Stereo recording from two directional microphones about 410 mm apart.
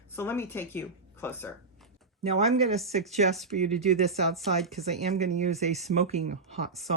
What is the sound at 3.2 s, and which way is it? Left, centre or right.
Speech, centre.